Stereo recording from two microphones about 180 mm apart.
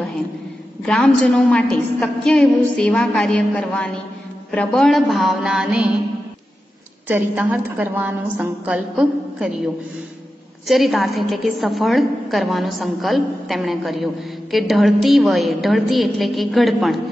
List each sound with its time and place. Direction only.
0.8 s a woman's voice: 5° left (ahead or behind)
7.1 s a woman's voice: 10° right (ahead or behind)
10.7 s a woman's voice: centre (ahead or behind)